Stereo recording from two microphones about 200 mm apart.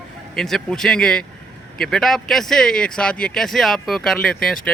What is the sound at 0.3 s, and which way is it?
Speech, centre (ahead or behind).